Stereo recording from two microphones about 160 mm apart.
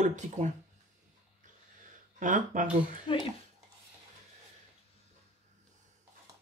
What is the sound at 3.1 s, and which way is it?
Speech, 35° left (ahead or behind).